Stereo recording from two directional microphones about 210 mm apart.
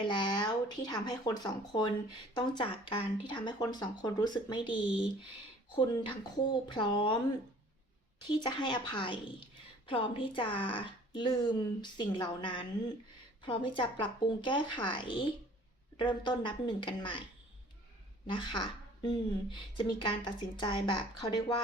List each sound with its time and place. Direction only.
0.0 s a woman's voice: 20° left (ahead or behind)
8.4 s a woman's voice: 20° left (ahead or behind)
18.3 s a woman's voice: 25° left (ahead or behind)